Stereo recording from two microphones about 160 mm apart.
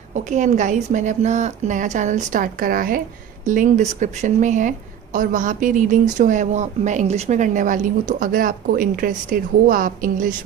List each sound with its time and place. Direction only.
0.1 s speech: 50° right (ahead or behind)